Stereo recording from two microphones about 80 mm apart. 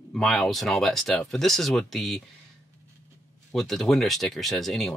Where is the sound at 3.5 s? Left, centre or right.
Centre.